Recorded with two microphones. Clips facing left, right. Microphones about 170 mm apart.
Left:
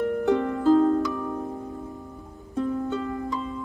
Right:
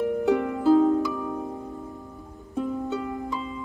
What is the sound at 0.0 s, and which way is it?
Harp, 10° right (ahead or behind).